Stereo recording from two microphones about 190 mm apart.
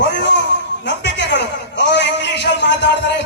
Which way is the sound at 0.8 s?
70° left (ahead or behind).